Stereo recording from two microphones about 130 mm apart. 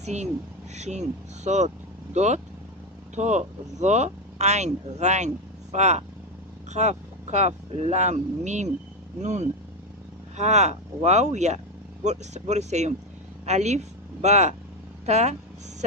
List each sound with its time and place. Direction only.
0.0 s speech: 60° right (ahead or behind)